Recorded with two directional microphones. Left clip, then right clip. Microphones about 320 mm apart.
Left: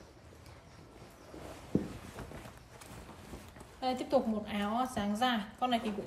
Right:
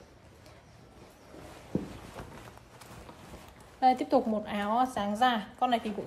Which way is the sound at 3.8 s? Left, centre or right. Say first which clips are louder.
Right 7 dB; right.